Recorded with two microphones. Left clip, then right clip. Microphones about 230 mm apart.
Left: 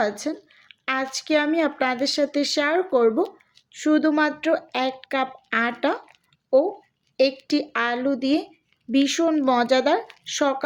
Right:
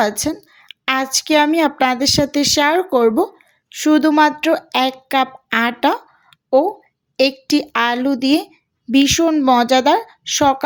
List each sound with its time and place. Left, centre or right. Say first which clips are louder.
0.0 s a woman's voice: right 6 dB; right
7.2 s a woman's voice: right 5 dB; right